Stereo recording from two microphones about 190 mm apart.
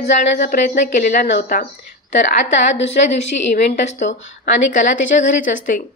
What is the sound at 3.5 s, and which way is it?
A woman's voice, 40° left (ahead or behind).